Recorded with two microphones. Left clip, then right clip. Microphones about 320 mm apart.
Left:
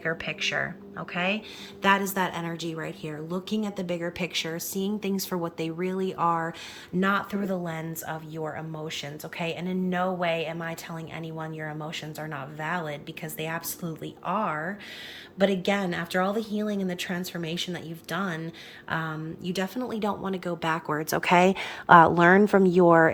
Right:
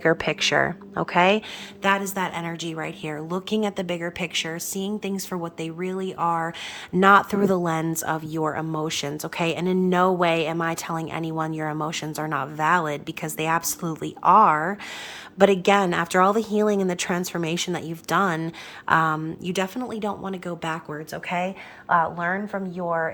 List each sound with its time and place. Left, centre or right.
0.0 s a woman's voice: centre
1.8 s a woman's voice: centre
20.9 s speech: centre